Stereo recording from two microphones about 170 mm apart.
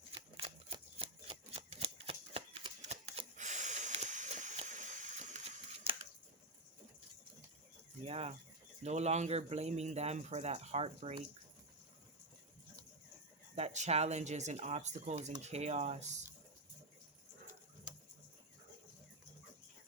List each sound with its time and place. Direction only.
0.3 s shuffling cards: 35° right (ahead or behind)
8.0 s speech: 35° right (ahead or behind)
13.6 s speech: 40° right (ahead or behind)